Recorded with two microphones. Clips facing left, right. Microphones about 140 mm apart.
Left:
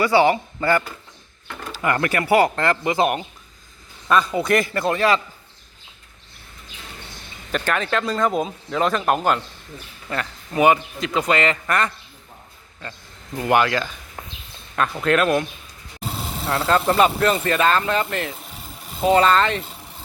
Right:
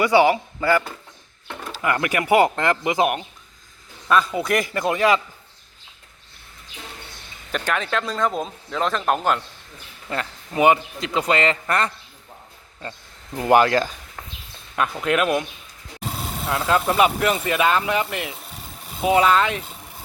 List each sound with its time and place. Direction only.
0.0 s speech: 15° right (ahead or behind)
0.3 s speech: 5° right (ahead or behind)
4.1 s speech: centre (ahead or behind)
7.5 s speech: centre (ahead or behind)
10.1 s a man's voice: 25° right (ahead or behind)
13.5 s speech: 35° right (ahead or behind)
14.2 s a sound: 25° left (ahead or behind)
15.0 s speech: 15° right (ahead or behind)
16.5 s speech: 5° right (ahead or behind)